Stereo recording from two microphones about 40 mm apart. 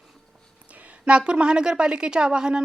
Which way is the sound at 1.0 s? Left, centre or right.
Right.